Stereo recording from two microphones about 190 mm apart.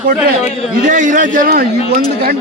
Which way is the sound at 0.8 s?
45° right (ahead or behind).